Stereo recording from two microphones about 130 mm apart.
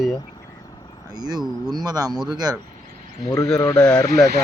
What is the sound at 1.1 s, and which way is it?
Speech, 30° right (ahead or behind).